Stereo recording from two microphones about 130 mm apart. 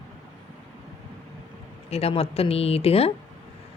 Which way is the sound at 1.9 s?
50° left (ahead or behind).